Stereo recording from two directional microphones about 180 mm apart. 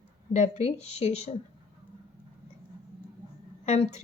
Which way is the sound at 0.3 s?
35° left (ahead or behind).